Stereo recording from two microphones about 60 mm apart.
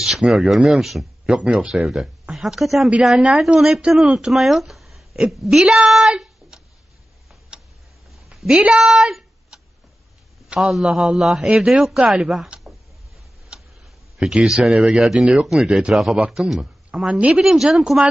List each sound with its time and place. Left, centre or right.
0.0 s speech: centre
1.4 s a woman's voice: centre
7.5 s tick-tock: centre
8.1 s a sound: centre
8.4 s speech: centre
10.6 s a woman's voice: centre
13.5 s tick: centre
14.2 s speech: centre
17.4 s a woman's voice: centre